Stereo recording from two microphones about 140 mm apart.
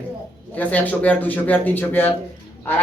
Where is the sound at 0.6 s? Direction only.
10° left (ahead or behind).